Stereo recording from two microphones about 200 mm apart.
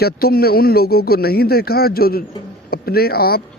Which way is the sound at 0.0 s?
50° left (ahead or behind).